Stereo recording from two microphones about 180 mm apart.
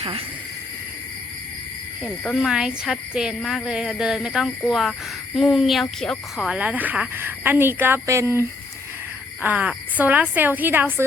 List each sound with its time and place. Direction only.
0.0 s speech: 30° right (ahead or behind)
2.0 s speech: centre (ahead or behind)